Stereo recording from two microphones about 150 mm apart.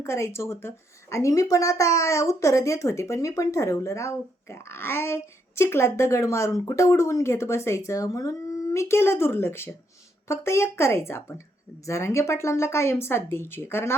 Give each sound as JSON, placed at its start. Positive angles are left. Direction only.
{"t": 0.0, "sound": "a woman's voice", "side_deg": 20}